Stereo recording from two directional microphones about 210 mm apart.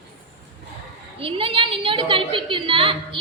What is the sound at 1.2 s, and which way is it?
A woman's voice, 25° right (ahead or behind).